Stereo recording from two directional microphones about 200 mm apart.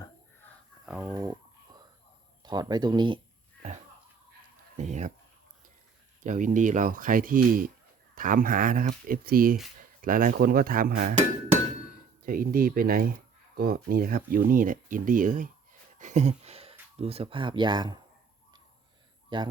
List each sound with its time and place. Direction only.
0.9 s chicken: 5° right (ahead or behind)
1.1 s speech: 15° right (ahead or behind)
2.4 s speech: 20° right (ahead or behind)
4.8 s speech: 35° right (ahead or behind)
6.2 s speech: 40° right (ahead or behind)
12.2 s speech: 45° right (ahead or behind); by 18.0 s 20° right (ahead or behind)
19.3 s speech: 25° right (ahead or behind)